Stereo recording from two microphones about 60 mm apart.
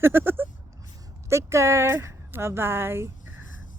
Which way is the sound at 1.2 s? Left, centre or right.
Right.